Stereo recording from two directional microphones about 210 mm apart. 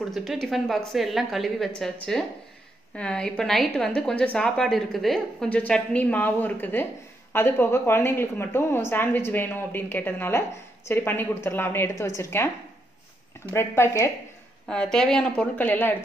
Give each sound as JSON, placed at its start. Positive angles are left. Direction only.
{"t": 0.1, "sound": "a woman's voice", "side_deg": 0}
{"t": 13.5, "sound": "a woman's voice", "side_deg": 10}